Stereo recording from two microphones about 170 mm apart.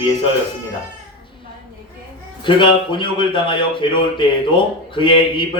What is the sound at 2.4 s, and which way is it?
A man's voice, 30° left (ahead or behind).